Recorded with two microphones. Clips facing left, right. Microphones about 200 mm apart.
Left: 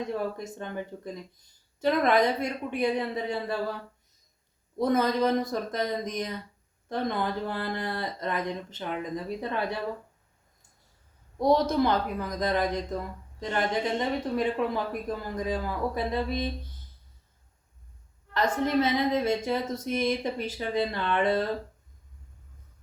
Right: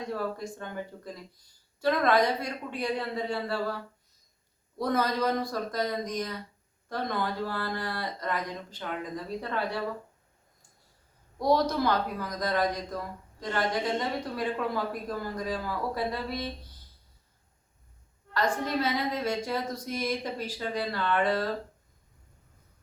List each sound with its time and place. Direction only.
0.1 s speech: 20° left (ahead or behind)
4.8 s speech: 20° left (ahead or behind)
11.3 s speech: 20° left (ahead or behind)
18.3 s speech: 25° left (ahead or behind)